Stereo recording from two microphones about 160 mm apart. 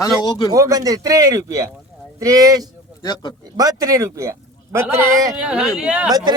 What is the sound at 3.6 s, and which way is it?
A man's voice, 20° right (ahead or behind).